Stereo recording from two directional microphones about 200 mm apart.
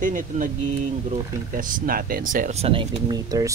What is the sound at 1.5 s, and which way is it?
Speech, 45° right (ahead or behind).